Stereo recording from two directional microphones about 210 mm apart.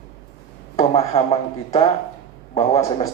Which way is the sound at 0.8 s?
30° left (ahead or behind).